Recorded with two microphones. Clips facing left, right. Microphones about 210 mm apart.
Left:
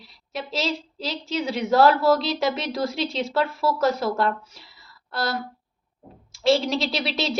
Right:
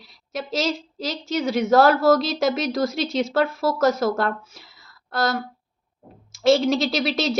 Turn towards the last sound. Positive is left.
turn(degrees=-45)  # may be behind; listen again after turning